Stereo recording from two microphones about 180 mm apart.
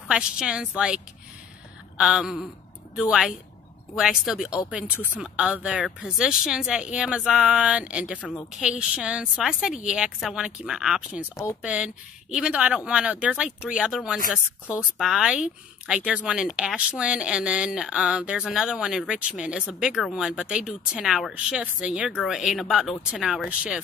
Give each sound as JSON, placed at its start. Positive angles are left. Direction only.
{"t": 0.1, "sound": "speech", "side_deg": -5}
{"t": 8.2, "sound": "speech", "side_deg": 5}
{"t": 8.6, "sound": "speech", "side_deg": -5}